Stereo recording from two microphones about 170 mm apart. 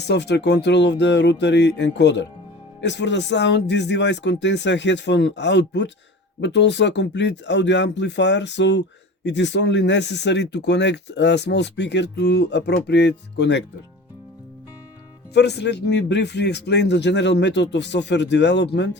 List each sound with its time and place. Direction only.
0.1 s speech: 80° left
15.3 s speech: 80° left